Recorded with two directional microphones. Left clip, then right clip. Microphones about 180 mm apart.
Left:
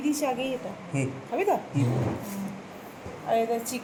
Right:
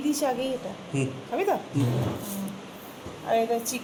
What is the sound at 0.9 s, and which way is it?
Speech, 65° left (ahead or behind).